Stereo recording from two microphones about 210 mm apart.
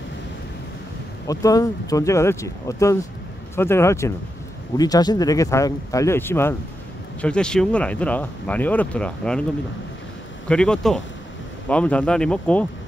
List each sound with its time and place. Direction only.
1.2 s speech: 15° left (ahead or behind)
10.5 s speech: 5° left (ahead or behind)